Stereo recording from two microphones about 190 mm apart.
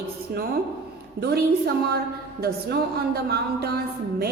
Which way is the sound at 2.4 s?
55° right (ahead or behind).